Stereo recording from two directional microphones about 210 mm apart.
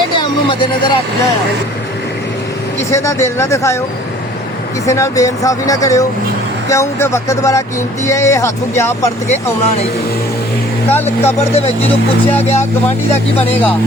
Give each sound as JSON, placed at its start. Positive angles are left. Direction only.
{"t": 2.9, "sound": "speech", "side_deg": 15}
{"t": 4.9, "sound": "speech", "side_deg": 15}
{"t": 10.9, "sound": "speech", "side_deg": 10}
{"t": 11.3, "sound": "speech", "side_deg": 30}